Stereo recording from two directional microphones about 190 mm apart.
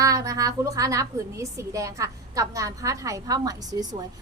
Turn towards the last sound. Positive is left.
turn(degrees=-20)  # may be behind; listen again after turning